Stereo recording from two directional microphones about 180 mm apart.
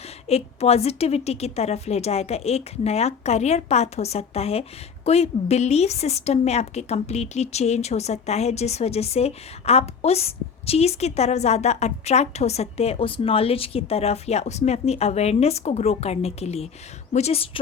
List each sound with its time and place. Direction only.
0.3 s a woman's voice: 35° left (ahead or behind)